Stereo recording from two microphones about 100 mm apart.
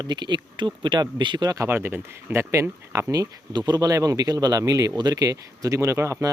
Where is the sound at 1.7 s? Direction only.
20° right (ahead or behind).